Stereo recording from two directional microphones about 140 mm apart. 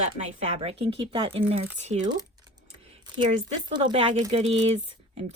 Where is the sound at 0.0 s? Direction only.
55° right (ahead or behind).